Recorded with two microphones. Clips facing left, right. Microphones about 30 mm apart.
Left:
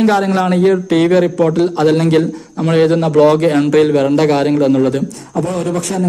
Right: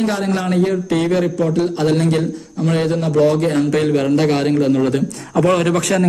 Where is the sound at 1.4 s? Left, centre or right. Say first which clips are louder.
Left 4 dB; left.